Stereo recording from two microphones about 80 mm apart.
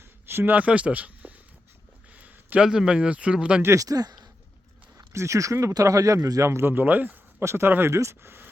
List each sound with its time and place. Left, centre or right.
0.0 s speech: right; by 3.6 s centre
3.6 s speech: right
4.9 s speech: right